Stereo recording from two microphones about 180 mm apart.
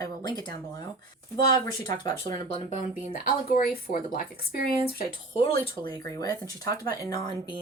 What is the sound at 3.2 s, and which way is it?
Speech, 50° left (ahead or behind).